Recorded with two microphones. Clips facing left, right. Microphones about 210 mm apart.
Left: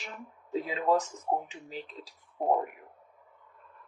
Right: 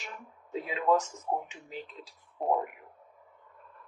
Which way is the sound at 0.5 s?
35° left (ahead or behind).